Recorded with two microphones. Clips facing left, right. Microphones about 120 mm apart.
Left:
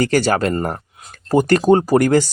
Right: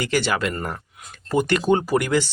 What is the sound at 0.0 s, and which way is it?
Speech, 45° left (ahead or behind).